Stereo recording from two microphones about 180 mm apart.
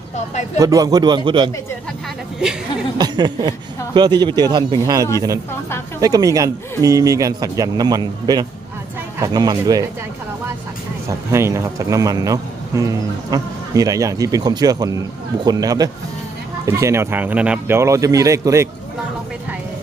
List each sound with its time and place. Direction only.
0.6 s speech: 20° right (ahead or behind)
3.0 s speech: 25° right (ahead or behind)
11.1 s a man's voice: 15° right (ahead or behind)